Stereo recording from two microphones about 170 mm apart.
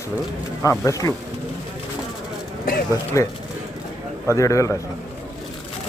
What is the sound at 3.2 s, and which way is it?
Speech, 20° left (ahead or behind).